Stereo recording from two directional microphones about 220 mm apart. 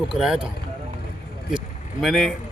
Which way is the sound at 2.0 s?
Centre (ahead or behind).